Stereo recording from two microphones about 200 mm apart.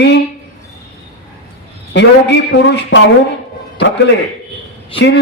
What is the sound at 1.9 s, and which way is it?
A man's voice, 60° left (ahead or behind).